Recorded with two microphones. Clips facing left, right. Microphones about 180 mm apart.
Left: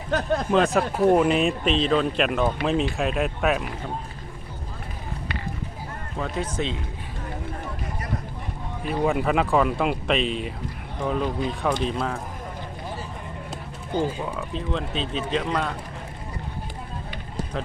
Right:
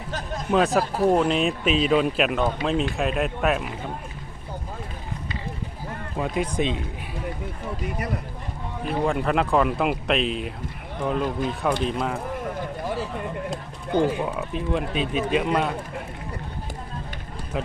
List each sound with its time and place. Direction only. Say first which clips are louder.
0.1 s speech: left 9 dB; 65° left (ahead or behind)
0.5 s speech: right 2 dB; centre (ahead or behind)
6.1 s speech: right 3 dB; 15° right (ahead or behind)
8.8 s speech: left 1 dB; centre (ahead or behind)
12.9 s a sound: right 7 dB; 65° right (ahead or behind)
13.9 s speech: right 4 dB; 65° right (ahead or behind)
14.3 s speech: right 2 dB; 15° right (ahead or behind)